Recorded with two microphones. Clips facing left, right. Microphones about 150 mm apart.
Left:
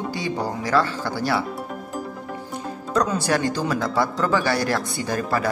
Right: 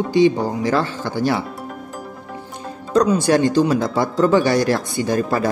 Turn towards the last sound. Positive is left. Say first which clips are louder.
# right 5 dB
turn(degrees=-30)  # may be behind; listen again after turning